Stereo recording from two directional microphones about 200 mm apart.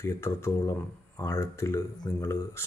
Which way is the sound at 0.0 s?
15° left (ahead or behind).